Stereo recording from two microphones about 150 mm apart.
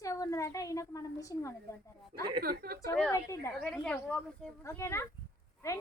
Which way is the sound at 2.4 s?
90° right.